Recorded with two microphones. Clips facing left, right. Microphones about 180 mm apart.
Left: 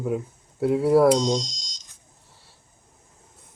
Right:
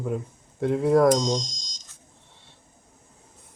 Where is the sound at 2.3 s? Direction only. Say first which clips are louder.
Right 1 dB; 5° left (ahead or behind).